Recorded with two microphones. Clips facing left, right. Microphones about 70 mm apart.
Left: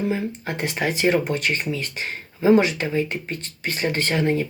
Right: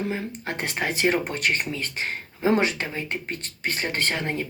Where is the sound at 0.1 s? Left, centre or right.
Right.